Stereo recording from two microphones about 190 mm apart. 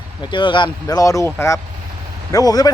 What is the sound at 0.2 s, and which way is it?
Speech, 25° left (ahead or behind).